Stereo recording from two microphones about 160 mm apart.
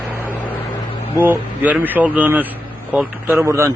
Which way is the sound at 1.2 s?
10° right (ahead or behind).